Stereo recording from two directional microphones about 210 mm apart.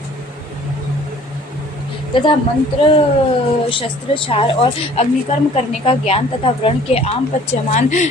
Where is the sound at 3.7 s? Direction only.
25° left (ahead or behind).